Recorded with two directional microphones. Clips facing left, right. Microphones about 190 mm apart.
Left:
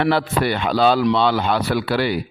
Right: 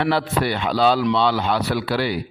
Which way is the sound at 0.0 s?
55° left (ahead or behind).